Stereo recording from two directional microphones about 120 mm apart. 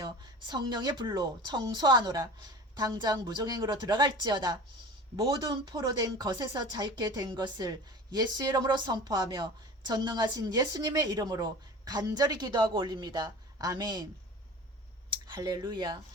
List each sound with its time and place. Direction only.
0.0 s speech: 40° right (ahead or behind)
15.3 s speech: 30° right (ahead or behind)